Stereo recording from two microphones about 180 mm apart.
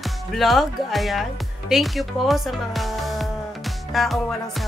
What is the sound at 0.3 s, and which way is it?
Speech, centre (ahead or behind).